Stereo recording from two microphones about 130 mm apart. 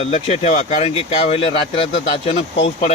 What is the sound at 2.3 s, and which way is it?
Speech, 60° left (ahead or behind).